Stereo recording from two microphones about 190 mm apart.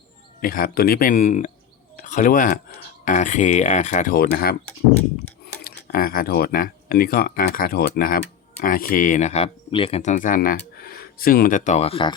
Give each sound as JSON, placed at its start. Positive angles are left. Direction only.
{"t": 0.4, "sound": "speech", "side_deg": 50}
{"t": 4.1, "sound": "speech", "side_deg": 50}
{"t": 5.6, "sound": "speech", "side_deg": 50}